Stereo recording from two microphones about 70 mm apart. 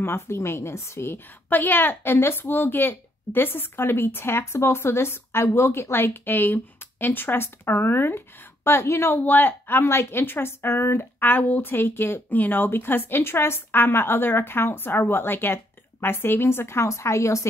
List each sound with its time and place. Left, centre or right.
0.0 s a woman's voice: left
9.1 s a woman's voice: left